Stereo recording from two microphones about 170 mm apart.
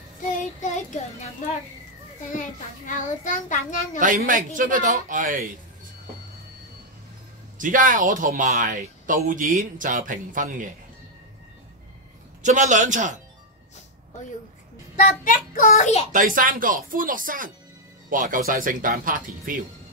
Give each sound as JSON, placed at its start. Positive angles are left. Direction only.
{"t": 0.6, "sound": "child singing", "side_deg": 45}
{"t": 2.3, "sound": "a child's voice", "side_deg": 50}
{"t": 4.0, "sound": "speech", "side_deg": -50}
{"t": 7.5, "sound": "speech", "side_deg": -50}
{"t": 12.4, "sound": "speech", "side_deg": -45}
{"t": 15.0, "sound": "a child's voice", "side_deg": 50}
{"t": 16.1, "sound": "speech", "side_deg": -50}